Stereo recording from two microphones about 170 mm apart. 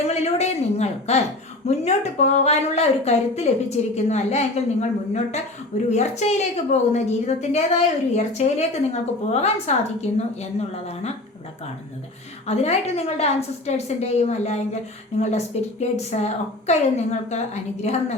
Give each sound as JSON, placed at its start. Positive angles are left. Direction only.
{"t": 0.1, "sound": "a sound", "side_deg": 40}
{"t": 1.6, "sound": "speech", "side_deg": 40}
{"t": 12.5, "sound": "speech", "side_deg": 40}